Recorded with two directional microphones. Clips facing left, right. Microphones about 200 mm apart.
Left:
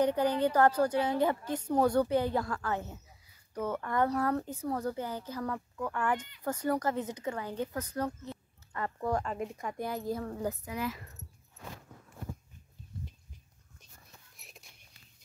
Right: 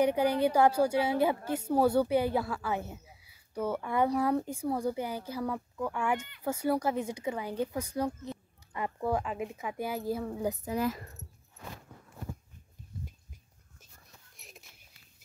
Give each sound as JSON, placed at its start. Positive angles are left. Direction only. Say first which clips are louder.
{"t": 0.0, "sound": "a woman's voice", "louder": "right 1 dB", "side_deg": -10}
{"t": 10.6, "sound": "speech", "louder": "right 5 dB", "side_deg": -35}
{"t": 14.3, "sound": "a sound", "louder": "right 2 dB", "side_deg": 0}